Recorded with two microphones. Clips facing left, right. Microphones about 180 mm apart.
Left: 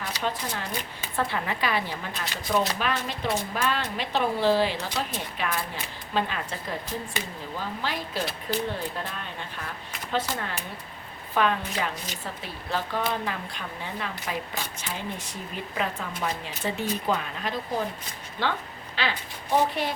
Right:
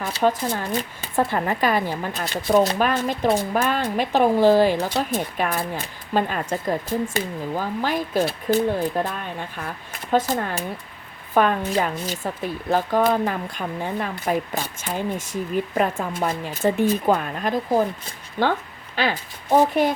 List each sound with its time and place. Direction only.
0.2 s speech: 45° right (ahead or behind)